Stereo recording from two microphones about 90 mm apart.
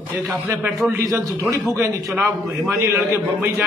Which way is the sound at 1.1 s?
35° right (ahead or behind).